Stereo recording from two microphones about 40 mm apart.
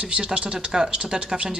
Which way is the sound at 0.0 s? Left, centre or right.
Right.